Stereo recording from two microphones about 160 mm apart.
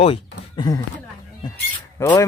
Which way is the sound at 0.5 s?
25° left (ahead or behind).